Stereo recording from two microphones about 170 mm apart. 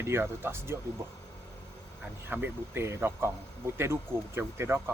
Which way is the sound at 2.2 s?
10° right (ahead or behind).